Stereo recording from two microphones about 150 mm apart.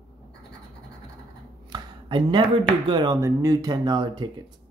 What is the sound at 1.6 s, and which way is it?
Speech, 30° right (ahead or behind).